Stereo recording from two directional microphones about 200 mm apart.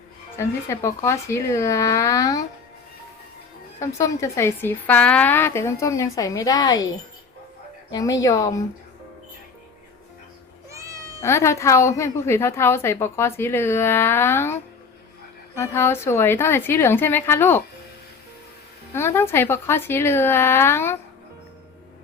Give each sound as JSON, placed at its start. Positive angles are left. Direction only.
{"t": 0.3, "sound": "a woman's voice", "side_deg": 15}
{"t": 3.8, "sound": "a woman's voice", "side_deg": 15}
{"t": 10.7, "sound": "cat", "side_deg": -15}
{"t": 11.2, "sound": "a woman's voice", "side_deg": 15}
{"t": 18.9, "sound": "a woman's voice", "side_deg": 10}